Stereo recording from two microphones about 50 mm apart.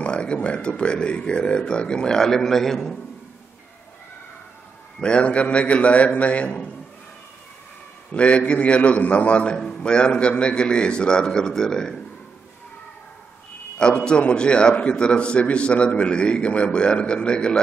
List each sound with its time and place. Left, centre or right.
0.0 s speech: left
5.0 s a man's voice: left
8.1 s a man's voice: left
13.7 s a man's voice: centre